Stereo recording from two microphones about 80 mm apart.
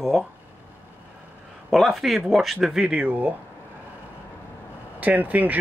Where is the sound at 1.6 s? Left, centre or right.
Centre.